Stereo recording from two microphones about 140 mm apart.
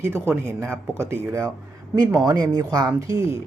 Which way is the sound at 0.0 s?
15° right (ahead or behind).